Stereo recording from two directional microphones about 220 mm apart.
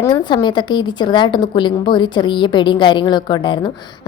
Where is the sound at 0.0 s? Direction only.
20° left (ahead or behind).